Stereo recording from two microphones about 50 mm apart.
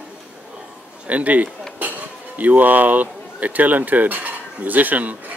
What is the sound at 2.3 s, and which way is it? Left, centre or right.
Speech, right.